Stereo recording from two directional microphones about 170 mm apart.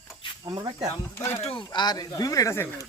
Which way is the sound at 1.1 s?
15° left (ahead or behind).